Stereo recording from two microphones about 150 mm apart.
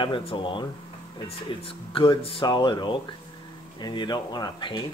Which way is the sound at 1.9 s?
35° left (ahead or behind).